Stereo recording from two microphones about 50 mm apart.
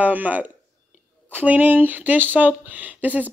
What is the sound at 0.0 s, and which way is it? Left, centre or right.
Speech, right.